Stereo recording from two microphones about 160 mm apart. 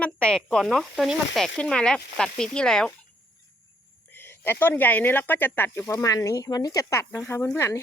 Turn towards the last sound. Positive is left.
turn(degrees=15)  # may be behind; listen again after turning